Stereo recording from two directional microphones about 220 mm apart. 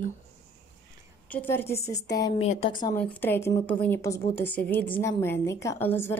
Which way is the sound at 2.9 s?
10° left (ahead or behind).